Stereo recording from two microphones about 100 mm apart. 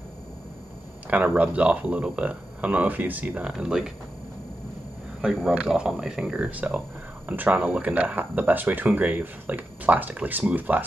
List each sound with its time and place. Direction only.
1.1 s speech: 15° right (ahead or behind)
5.2 s speech: centre (ahead or behind)